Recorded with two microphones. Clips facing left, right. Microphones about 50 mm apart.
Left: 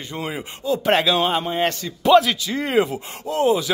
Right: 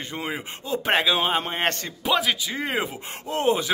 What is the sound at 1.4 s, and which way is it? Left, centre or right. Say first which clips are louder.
Speech: left 3 dB; right.